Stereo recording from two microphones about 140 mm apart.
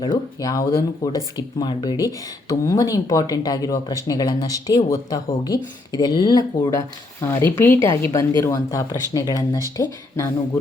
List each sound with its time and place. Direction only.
0.3 s speech: 25° left (ahead or behind)